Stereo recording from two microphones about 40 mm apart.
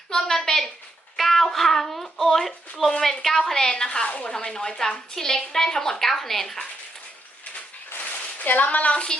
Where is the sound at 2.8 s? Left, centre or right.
Centre.